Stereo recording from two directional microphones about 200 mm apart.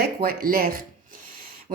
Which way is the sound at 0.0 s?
50° right (ahead or behind).